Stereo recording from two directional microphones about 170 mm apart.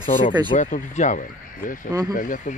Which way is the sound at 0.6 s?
45° left (ahead or behind).